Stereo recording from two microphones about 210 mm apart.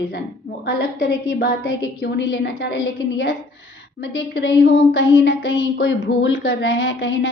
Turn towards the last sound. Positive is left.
turn(degrees=60)  # may be behind; listen again after turning